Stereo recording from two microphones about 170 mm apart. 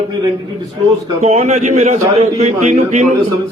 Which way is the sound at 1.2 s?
40° right (ahead or behind).